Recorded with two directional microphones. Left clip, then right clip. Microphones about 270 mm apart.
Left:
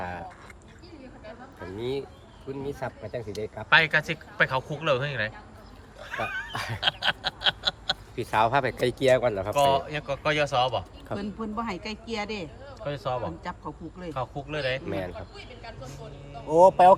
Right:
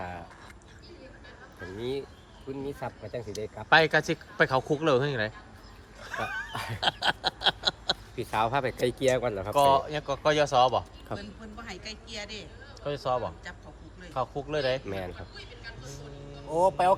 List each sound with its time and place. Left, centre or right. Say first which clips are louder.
0.0 s duck: left 4 dB; centre
1.8 s speech: left 2 dB; centre
3.7 s speech: left 1 dB; centre
6.5 s a sound: left 3 dB; centre
6.8 s a sound: left 1 dB; centre
8.1 s speech: left 6 dB; centre
9.6 s speech: right 2 dB; centre
11.1 s a man's voice: left 7 dB; left
12.8 s speech: right 1 dB; centre
14.4 s speech: right 1 dB; centre
14.8 s speech: left 3 dB; centre
15.4 s a man's voice: left 2 dB; centre